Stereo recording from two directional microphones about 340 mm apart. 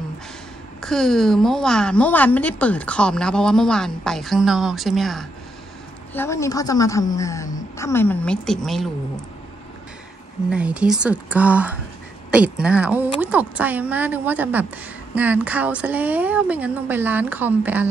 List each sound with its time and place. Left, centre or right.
0.8 s a woman's voice: centre
10.5 s a woman's voice: centre